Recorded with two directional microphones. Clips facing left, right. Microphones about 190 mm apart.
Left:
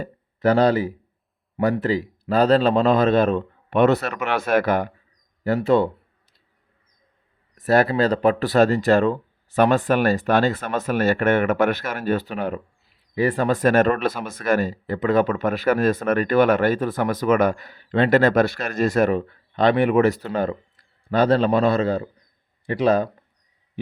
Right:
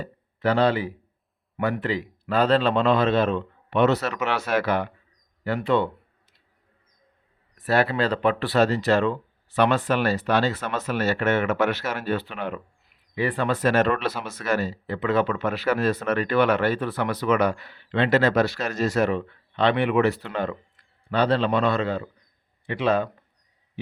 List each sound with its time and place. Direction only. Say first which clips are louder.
0.0 s speech: left 5 dB; 40° left (ahead or behind)
7.5 s speech: left 4 dB; 45° left (ahead or behind)